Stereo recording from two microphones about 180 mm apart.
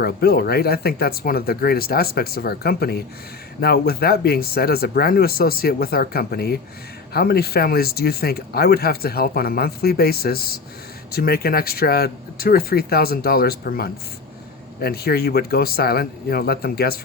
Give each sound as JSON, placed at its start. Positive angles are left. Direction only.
{"t": 0.0, "sound": "speech", "side_deg": 60}